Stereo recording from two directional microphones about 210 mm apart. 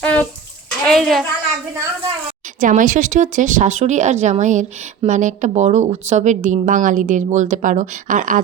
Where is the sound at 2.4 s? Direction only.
40° right (ahead or behind).